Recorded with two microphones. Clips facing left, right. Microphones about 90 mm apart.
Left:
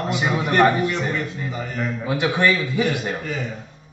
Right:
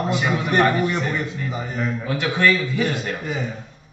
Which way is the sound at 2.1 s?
15° left (ahead or behind).